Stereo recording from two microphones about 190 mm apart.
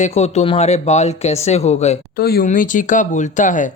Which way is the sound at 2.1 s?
55° left (ahead or behind).